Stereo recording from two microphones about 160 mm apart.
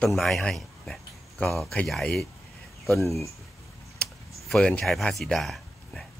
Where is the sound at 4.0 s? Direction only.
5° left (ahead or behind).